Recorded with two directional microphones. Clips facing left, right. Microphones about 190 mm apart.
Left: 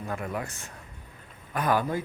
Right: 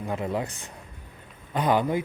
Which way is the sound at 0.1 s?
25° right (ahead or behind).